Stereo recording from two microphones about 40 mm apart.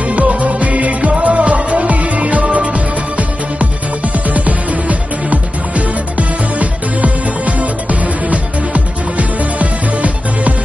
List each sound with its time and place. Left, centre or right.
0.1 s music: right
4.3 s music: right